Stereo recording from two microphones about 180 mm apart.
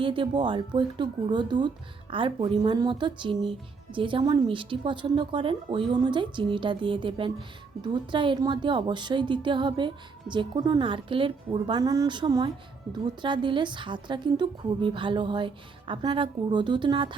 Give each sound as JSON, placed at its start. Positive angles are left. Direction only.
{"t": 0.0, "sound": "a woman's voice", "side_deg": -30}
{"t": 11.8, "sound": "a woman's voice", "side_deg": -20}